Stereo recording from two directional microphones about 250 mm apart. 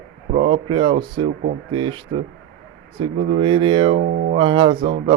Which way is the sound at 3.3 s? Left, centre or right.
Centre.